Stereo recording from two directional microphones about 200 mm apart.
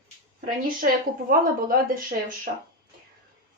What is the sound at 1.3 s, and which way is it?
Speech, 45° right (ahead or behind).